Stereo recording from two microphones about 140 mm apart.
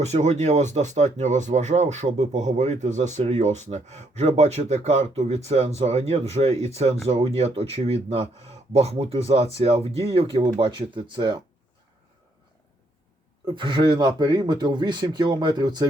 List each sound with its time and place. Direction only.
0.0 s speech: 55° right (ahead or behind); by 11.4 s 35° right (ahead or behind)
13.6 s speech: 35° right (ahead or behind)